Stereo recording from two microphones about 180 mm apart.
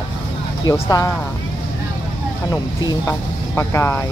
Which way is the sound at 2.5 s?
15° left (ahead or behind).